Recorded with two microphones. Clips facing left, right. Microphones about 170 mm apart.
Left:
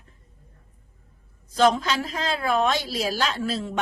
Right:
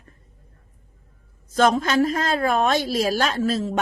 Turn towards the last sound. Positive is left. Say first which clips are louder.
# right 5 dB
turn(degrees=-40)  # may be behind; listen again after turning